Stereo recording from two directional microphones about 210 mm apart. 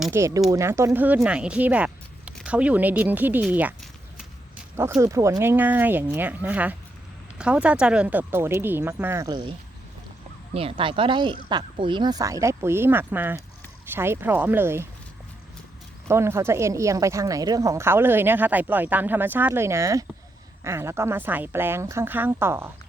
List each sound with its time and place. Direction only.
0.0 s speech: 10° right (ahead or behind)
4.8 s speech: 15° right (ahead or behind)
16.0 s speech: 15° right (ahead or behind)